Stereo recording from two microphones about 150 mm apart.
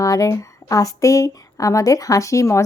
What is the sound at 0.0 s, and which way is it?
Speech, 20° left (ahead or behind).